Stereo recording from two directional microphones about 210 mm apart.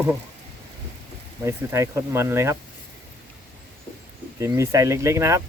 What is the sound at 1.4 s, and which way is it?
Speech, 15° right (ahead or behind).